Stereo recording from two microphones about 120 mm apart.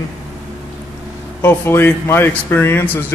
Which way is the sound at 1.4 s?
20° left (ahead or behind).